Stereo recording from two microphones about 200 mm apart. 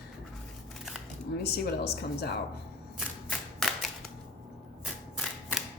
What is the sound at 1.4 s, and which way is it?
Speech, 50° left (ahead or behind).